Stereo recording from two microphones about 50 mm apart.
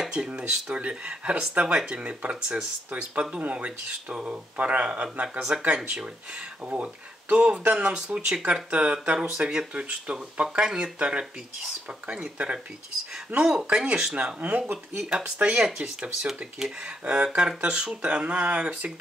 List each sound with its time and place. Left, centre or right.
0.0 s a sound: centre
0.3 s speech: right
6.6 s speech: right; by 9.7 s centre
9.8 s speech: right
13.4 s speech: centre
14.1 s speech: right
15.0 s speech: centre